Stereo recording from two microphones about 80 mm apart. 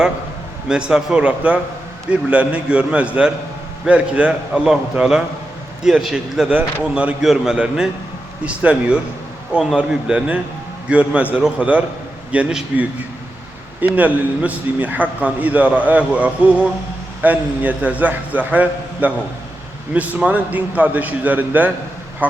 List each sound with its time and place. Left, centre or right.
0.7 s a man's voice: centre
6.9 s a man's voice: centre
13.8 s a man's voice: centre
22.2 s duck: right